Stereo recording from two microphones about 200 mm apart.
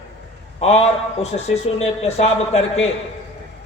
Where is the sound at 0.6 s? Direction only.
30° left (ahead or behind).